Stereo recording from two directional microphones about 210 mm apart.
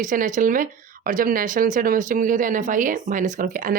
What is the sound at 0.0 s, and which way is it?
Speech, 40° right (ahead or behind).